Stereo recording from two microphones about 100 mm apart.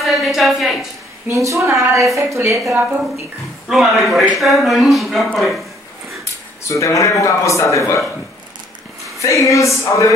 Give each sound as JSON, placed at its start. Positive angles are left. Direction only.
{"t": 0.0, "sound": "a woman's voice", "side_deg": 0}
{"t": 1.3, "sound": "a woman's voice", "side_deg": -30}
{"t": 2.7, "sound": "a woman's voice", "side_deg": -15}
{"t": 3.6, "sound": "speech", "side_deg": -5}
{"t": 6.7, "sound": "speech", "side_deg": 30}
{"t": 9.2, "sound": "speech", "side_deg": 30}